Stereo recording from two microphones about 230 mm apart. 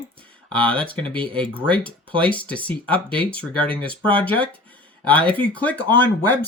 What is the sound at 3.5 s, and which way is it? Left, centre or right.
Speech, right.